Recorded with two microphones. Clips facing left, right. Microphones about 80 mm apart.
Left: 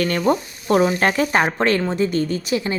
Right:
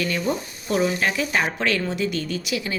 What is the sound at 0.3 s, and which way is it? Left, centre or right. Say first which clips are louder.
Speech: left 7 dB; left.